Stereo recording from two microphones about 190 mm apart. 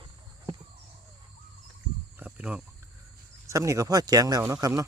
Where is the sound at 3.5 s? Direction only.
15° right (ahead or behind).